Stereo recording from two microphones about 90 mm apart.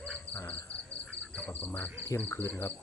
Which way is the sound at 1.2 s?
10° left (ahead or behind).